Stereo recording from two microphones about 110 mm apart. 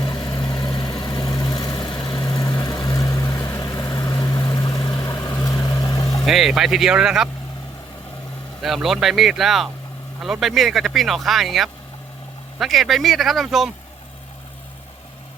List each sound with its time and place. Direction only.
0.0 s vehicle: 40° left (ahead or behind)
6.1 s speech: centre (ahead or behind)
8.6 s speech: centre (ahead or behind)